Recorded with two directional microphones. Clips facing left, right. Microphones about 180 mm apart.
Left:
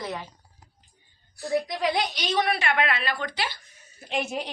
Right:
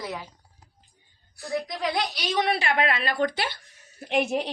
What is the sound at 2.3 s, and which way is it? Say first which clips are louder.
A woman's voice: even; 25° right (ahead or behind).